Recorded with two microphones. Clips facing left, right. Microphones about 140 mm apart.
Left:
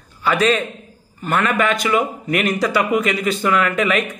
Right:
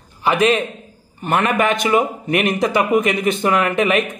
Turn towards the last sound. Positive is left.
turn(degrees=-20)  # may be behind; listen again after turning